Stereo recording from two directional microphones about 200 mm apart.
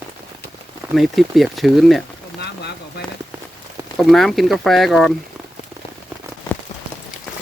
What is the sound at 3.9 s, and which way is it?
Speech, centre (ahead or behind).